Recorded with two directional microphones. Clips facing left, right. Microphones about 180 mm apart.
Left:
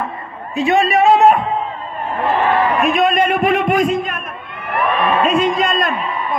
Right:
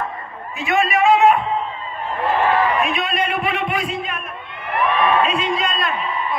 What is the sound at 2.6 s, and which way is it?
A man's voice, 45° left (ahead or behind).